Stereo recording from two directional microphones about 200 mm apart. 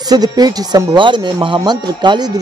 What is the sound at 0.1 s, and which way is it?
Speech, 20° right (ahead or behind).